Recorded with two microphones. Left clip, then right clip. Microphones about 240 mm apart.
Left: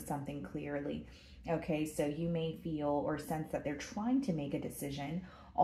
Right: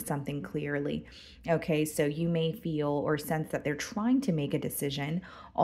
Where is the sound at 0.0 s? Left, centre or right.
Right.